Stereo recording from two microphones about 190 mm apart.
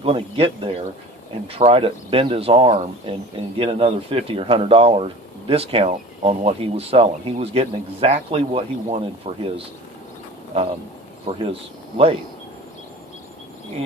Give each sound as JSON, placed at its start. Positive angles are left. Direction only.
{"t": 0.0, "sound": "speech", "side_deg": -30}
{"t": 11.3, "sound": "speech", "side_deg": -30}